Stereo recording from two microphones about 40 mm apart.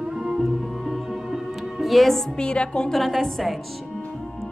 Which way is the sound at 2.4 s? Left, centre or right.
Left.